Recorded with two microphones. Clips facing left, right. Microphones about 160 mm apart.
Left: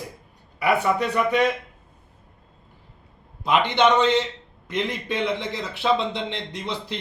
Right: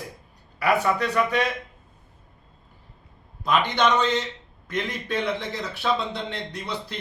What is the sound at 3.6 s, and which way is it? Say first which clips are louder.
A man's voice: left 5 dB; 25° left (ahead or behind).